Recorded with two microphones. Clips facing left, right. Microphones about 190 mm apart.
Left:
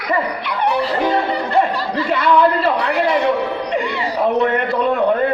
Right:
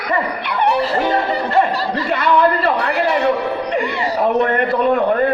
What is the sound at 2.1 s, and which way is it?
Speech, 55° right (ahead or behind).